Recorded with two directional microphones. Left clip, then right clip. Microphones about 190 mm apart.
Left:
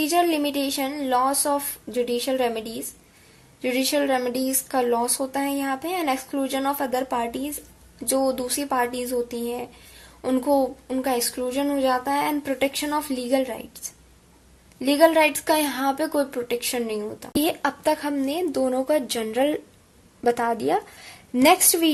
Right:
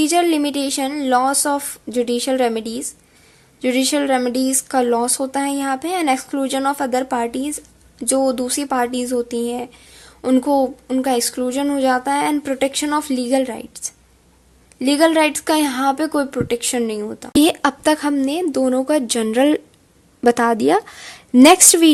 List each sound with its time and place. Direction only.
0.0 s speech: 40° right (ahead or behind)
14.8 s speech: 40° right (ahead or behind)